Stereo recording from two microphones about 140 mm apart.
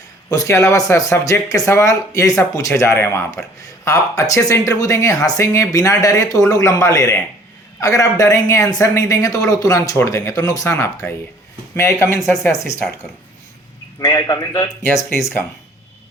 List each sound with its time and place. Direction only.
0.3 s speech: 20° left (ahead or behind)
14.0 s speech: 30° left (ahead or behind)
15.2 s speech: 15° left (ahead or behind)